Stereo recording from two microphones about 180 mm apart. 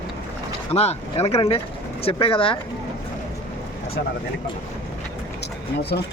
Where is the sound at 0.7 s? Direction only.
35° left (ahead or behind).